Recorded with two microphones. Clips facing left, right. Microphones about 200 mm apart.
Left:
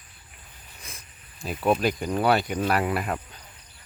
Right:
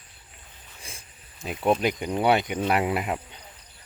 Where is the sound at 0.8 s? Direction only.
30° right (ahead or behind).